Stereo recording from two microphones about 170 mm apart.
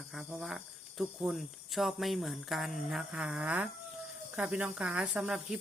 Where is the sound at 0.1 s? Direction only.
5° right (ahead or behind).